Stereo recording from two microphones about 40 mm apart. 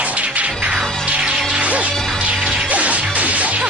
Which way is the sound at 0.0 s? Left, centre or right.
Right.